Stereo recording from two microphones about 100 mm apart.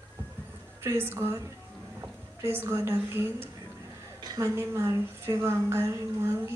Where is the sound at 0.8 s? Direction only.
25° right (ahead or behind).